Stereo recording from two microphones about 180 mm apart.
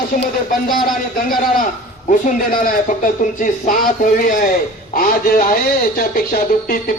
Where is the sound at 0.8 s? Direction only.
50° left (ahead or behind).